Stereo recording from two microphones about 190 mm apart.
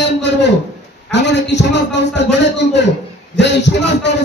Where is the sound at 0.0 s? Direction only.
65° left (ahead or behind).